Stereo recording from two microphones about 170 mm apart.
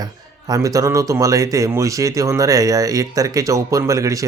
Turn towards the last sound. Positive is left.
turn(degrees=-20)  # may be behind; listen again after turning